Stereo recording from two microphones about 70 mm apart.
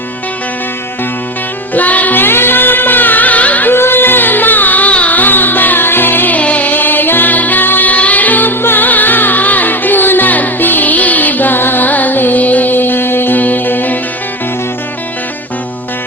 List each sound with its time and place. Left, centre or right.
1.7 s music: left